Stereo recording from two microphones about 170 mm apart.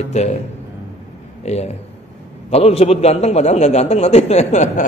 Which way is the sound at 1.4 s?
40° left (ahead or behind).